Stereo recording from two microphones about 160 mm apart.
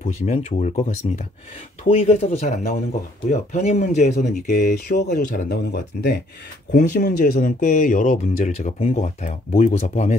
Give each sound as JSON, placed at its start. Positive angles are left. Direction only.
{"t": 0.0, "sound": "speech", "side_deg": 45}
{"t": 4.9, "sound": "speech", "side_deg": 65}
{"t": 5.5, "sound": "speech", "side_deg": 90}
{"t": 6.7, "sound": "speech", "side_deg": 75}